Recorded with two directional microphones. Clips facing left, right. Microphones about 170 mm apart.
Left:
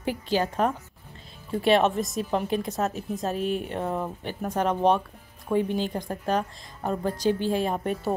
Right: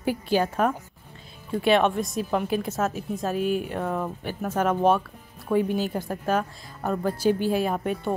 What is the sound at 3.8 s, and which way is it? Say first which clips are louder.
Speech: right 1 dB; 20° left (ahead or behind).